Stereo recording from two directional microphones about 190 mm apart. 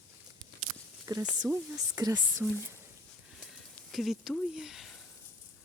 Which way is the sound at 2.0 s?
20° right (ahead or behind).